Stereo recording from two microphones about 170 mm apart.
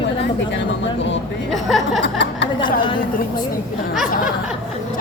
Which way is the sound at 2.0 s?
90° left.